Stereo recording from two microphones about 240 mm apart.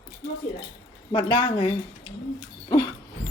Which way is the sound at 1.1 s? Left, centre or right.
Centre.